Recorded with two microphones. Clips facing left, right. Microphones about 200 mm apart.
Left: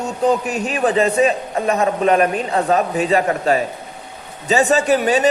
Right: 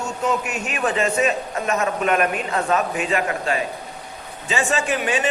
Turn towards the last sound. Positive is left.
turn(degrees=40)  # may be behind; listen again after turning